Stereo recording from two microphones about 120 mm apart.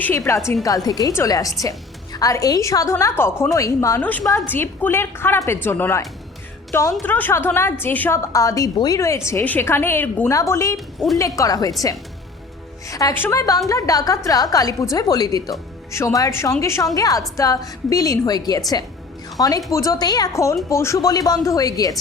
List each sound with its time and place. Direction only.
0.0 s a woman's voice: 20° left (ahead or behind)
0.9 s a woman's voice: 30° left (ahead or behind)
4.0 s a woman's voice: 15° left (ahead or behind)
11.0 s a woman's voice: 5° right (ahead or behind)
11.3 s a woman's voice: 30° left (ahead or behind)
12.9 s a woman's voice: 30° left (ahead or behind)